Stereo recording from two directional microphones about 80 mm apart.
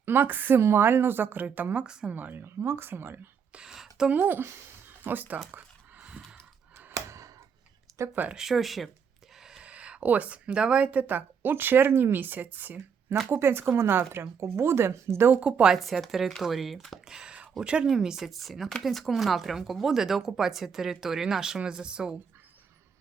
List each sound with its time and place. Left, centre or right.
0.0 s a woman's voice: right
1.8 s a woman's voice: centre
2.1 s a woman's voice: right
3.5 s a sound: centre
4.2 s a woman's voice: right
5.5 s a sound: centre
6.9 s a sound: right
8.1 s a woman's voice: right
8.4 s a woman's voice: centre; by 15.4 s right
15.4 s speech: centre